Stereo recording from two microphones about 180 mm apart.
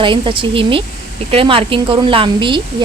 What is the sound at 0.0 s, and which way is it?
Speech, 30° right (ahead or behind).